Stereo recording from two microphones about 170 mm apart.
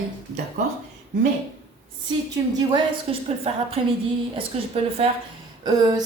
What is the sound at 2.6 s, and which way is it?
A woman's voice, 30° right (ahead or behind).